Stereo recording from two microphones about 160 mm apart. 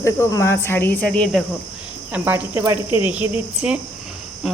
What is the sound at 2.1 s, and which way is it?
Speech, 10° right (ahead or behind).